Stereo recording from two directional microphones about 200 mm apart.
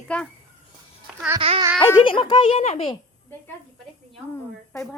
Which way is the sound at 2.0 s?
25° left (ahead or behind).